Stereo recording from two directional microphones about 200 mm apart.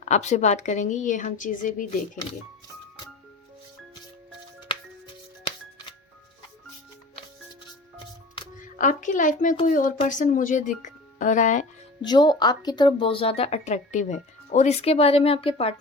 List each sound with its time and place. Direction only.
0.0 s a woman's voice: 35° left (ahead or behind)
8.6 s a woman's voice: 40° left (ahead or behind)
10.8 s music: 40° left (ahead or behind)
12.0 s speech: 20° left (ahead or behind)